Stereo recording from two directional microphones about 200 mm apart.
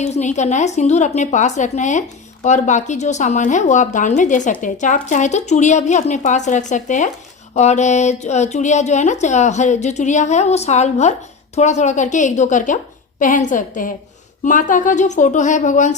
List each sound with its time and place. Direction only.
0.0 s a woman's voice: 35° left (ahead or behind)